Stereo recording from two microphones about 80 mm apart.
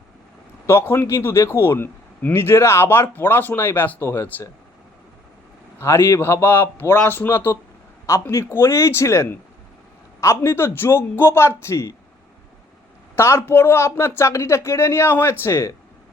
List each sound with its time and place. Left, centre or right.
0.7 s a man's voice: left
5.8 s a man's voice: left
13.1 s speech: left